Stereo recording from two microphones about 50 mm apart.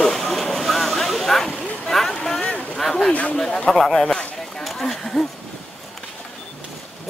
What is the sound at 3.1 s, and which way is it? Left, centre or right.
Speech, left.